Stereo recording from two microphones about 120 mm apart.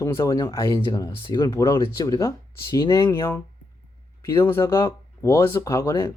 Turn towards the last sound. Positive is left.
turn(degrees=25)  # may be behind; listen again after turning